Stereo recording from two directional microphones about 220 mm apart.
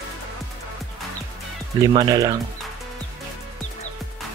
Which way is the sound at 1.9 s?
20° right (ahead or behind).